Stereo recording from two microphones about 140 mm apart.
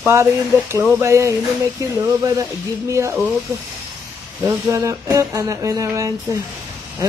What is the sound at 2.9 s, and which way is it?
Speech, 20° right (ahead or behind).